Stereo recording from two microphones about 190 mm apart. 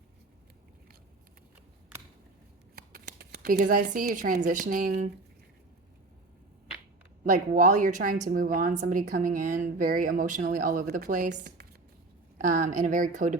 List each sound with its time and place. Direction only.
2.7 s speech: 55° right (ahead or behind)
7.3 s a woman's voice: 40° right (ahead or behind)